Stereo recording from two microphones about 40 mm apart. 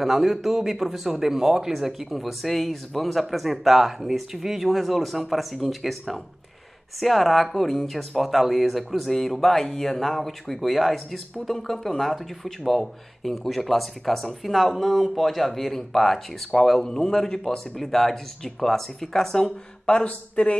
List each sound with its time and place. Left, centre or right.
0.0 s speech: centre
20.1 s speech: left